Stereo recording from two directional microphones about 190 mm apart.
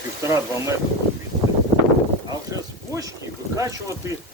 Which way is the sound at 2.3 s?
20° right (ahead or behind).